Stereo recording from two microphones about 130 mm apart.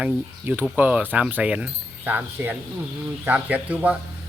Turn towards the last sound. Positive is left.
turn(degrees=-10)  # may be behind; listen again after turning